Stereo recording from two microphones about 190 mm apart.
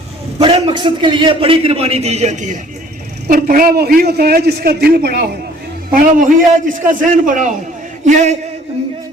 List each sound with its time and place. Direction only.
0.3 s a man's voice: 30° right (ahead or behind)